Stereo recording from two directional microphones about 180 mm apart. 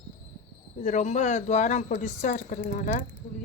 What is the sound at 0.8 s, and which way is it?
Speech, 40° left (ahead or behind).